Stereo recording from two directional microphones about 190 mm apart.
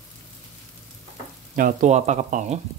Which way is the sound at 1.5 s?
40° right (ahead or behind).